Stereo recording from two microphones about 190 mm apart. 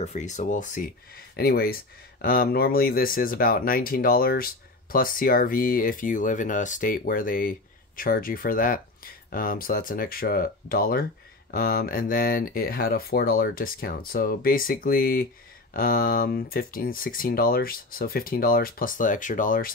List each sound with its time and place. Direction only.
0.0 s speech: 35° left (ahead or behind)